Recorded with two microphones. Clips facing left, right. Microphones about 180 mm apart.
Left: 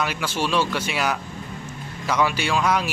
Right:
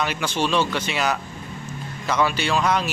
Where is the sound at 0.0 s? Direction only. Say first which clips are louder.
Right 1 dB; 5° left (ahead or behind).